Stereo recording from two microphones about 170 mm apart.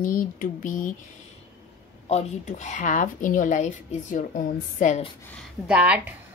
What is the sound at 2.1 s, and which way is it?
Speech, 40° left (ahead or behind).